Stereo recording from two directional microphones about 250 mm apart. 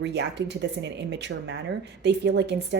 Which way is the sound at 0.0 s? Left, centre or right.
Right.